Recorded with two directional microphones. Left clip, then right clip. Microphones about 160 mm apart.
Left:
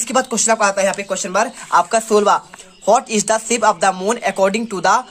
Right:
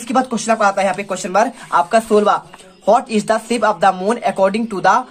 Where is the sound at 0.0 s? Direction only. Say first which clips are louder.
Even; 35° left (ahead or behind).